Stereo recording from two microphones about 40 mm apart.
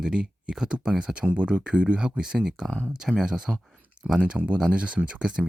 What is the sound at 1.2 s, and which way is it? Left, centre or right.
Speech, right.